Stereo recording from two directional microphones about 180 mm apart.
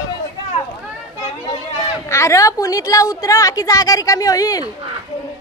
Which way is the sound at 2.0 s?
15° left (ahead or behind).